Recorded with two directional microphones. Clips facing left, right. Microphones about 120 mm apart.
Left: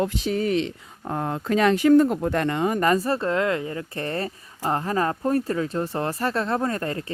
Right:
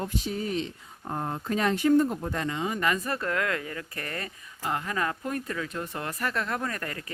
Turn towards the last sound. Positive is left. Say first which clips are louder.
# left 7 dB
turn(degrees=30)  # may be behind; listen again after turning